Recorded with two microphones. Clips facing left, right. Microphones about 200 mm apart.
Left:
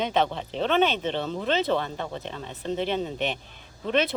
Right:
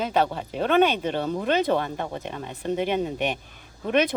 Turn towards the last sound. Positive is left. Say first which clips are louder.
# right 2 dB
turn(degrees=-15)  # may be behind; listen again after turning